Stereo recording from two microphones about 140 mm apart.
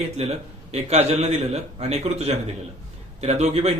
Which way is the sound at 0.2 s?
50° right (ahead or behind).